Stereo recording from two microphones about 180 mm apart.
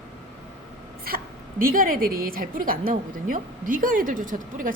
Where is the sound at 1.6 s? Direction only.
50° right (ahead or behind).